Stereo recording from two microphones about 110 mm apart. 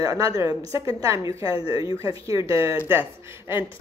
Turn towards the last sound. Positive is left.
turn(degrees=-20)  # may be behind; listen again after turning